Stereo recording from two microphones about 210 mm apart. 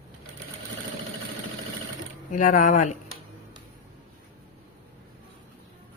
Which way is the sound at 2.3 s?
35° left (ahead or behind).